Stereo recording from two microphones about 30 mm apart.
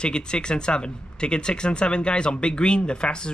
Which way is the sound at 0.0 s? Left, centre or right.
Left.